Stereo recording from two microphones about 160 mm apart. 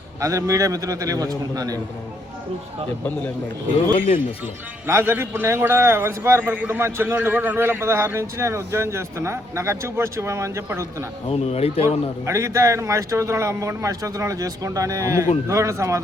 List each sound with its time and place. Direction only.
0.2 s speech: 20° right (ahead or behind)
3.9 s speech: 35° left (ahead or behind)
4.9 s a man's voice: 15° right (ahead or behind)
11.3 s speech: 40° left (ahead or behind)
12.2 s speech: 20° right (ahead or behind)